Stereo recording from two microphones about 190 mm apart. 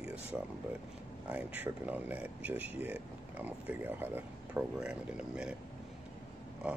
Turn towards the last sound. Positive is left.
turn(degrees=-5)  # may be behind; listen again after turning